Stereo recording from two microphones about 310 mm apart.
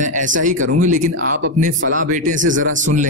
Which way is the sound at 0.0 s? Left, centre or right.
Right.